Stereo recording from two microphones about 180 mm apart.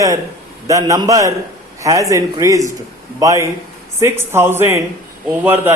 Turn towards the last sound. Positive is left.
turn(degrees=-10)  # may be behind; listen again after turning